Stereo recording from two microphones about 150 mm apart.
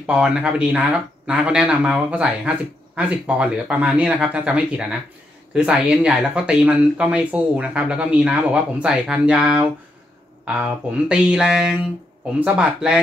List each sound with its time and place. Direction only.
0.0 s speech: 5° right (ahead or behind)